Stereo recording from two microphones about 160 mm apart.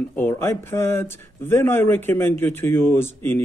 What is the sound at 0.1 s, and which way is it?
Speech, 15° left (ahead or behind).